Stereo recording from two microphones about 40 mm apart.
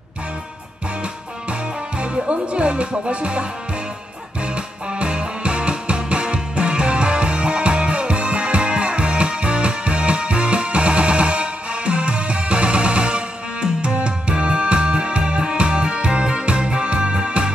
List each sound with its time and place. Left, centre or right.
1.5 s speech: right
4.9 s music: right